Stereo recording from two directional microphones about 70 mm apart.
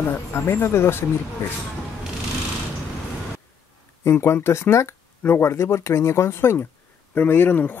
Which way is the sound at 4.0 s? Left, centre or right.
Left.